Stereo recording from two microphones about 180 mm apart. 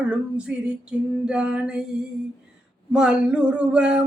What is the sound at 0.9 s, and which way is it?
Female singing, 5° right (ahead or behind).